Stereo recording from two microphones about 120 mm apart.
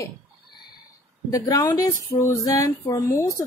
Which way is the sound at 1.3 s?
30° left (ahead or behind).